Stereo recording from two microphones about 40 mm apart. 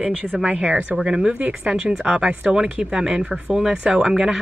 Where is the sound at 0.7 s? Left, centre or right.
Right.